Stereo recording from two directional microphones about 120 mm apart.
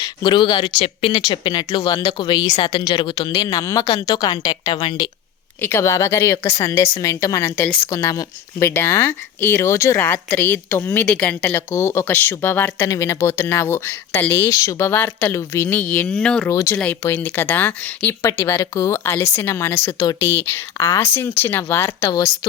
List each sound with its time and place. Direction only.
0.0 s speech: 40° left (ahead or behind)
1.1 s speech: 35° left (ahead or behind)
3.3 s speech: 30° left (ahead or behind)
5.6 s speech: 20° left (ahead or behind)
11.4 s speech: 20° left (ahead or behind); by 16.5 s 5° left (ahead or behind)
16.5 s speech: 25° left (ahead or behind)
16.7 s speech: 10° left (ahead or behind)